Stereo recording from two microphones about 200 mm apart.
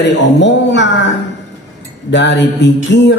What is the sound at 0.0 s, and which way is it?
Speech, 60° left (ahead or behind).